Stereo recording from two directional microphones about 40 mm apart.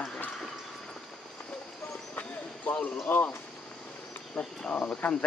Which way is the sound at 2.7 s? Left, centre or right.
Left.